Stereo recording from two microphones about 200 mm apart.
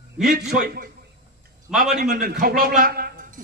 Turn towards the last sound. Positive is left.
turn(degrees=-45)  # may be behind; listen again after turning